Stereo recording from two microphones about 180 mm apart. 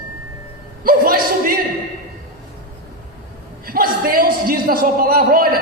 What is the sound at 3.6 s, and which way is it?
A man's voice, 55° right (ahead or behind).